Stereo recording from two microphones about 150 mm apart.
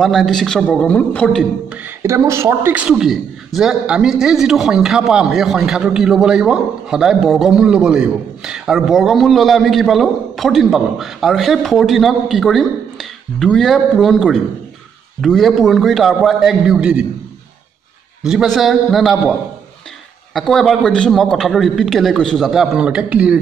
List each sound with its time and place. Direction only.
0.0 s a man's voice: centre (ahead or behind)
2.0 s a man's voice: 20° right (ahead or behind)
18.2 s a man's voice: 5° right (ahead or behind)
20.3 s a man's voice: centre (ahead or behind)